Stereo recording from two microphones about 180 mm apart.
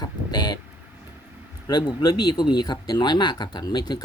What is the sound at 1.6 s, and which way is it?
Speech, 20° left (ahead or behind).